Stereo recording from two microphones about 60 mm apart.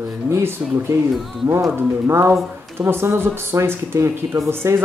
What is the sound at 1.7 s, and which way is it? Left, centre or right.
Speech, right.